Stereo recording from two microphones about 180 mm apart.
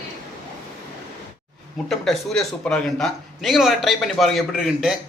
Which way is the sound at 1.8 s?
Centre (ahead or behind).